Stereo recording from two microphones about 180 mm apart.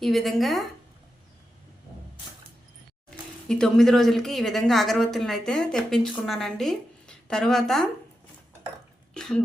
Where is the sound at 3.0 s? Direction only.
5° left (ahead or behind).